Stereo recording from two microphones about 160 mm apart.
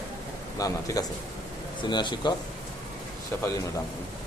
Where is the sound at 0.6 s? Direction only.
20° left (ahead or behind).